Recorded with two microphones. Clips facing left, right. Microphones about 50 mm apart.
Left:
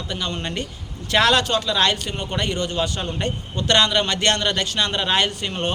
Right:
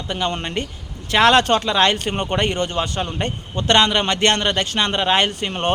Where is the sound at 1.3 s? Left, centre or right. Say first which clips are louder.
Right 4 dB; right.